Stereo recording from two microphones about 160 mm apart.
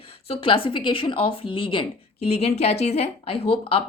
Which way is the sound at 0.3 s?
35° left (ahead or behind).